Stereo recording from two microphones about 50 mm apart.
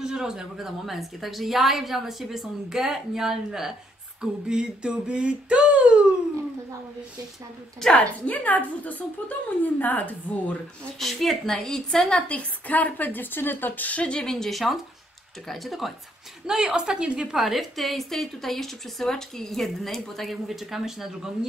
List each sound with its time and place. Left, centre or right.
0.0 s a woman's voice: centre
4.2 s a sound: centre
7.9 s a woman's voice: left
11.0 s a woman's voice: centre
12.2 s a woman's voice: left; by 14.5 s centre
14.5 s a woman's voice: centre
16.4 s a woman's voice: centre
17.3 s a woman's voice: centre